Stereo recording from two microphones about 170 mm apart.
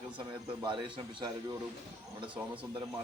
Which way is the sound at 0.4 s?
30° right (ahead or behind).